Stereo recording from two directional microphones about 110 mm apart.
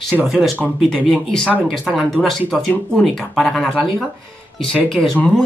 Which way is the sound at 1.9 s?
5° right (ahead or behind).